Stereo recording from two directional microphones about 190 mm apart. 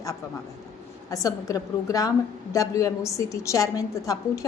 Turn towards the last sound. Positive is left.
turn(degrees=15)  # may be behind; listen again after turning